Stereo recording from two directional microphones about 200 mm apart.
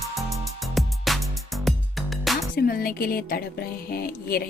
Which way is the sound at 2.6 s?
45° left (ahead or behind).